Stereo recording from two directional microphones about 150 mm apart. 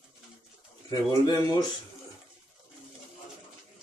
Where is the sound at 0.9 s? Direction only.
25° left (ahead or behind).